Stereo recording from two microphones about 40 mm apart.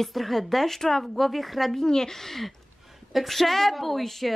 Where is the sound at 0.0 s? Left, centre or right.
Centre.